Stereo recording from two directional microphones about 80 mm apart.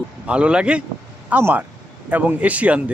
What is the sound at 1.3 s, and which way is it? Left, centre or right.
A man's voice, right.